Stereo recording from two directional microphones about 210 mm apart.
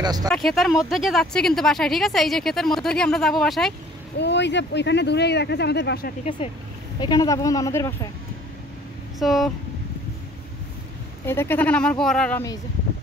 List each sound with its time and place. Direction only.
0.0 s speech: 20° right (ahead or behind)
0.3 s speech: centre (ahead or behind)
4.2 s speech: 55° left (ahead or behind)
6.4 s speech: 25° left (ahead or behind)
9.2 s speech: centre (ahead or behind)
11.2 s speech: 10° left (ahead or behind)